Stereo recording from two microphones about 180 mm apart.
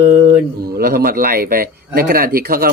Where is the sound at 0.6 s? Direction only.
60° right (ahead or behind).